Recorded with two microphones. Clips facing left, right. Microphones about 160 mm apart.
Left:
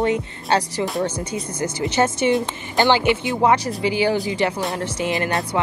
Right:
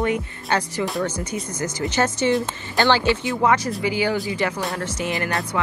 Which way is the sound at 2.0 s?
25° left (ahead or behind).